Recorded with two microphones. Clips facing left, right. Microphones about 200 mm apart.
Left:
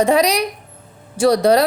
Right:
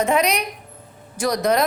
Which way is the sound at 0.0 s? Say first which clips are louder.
Left 5 dB; 35° left (ahead or behind).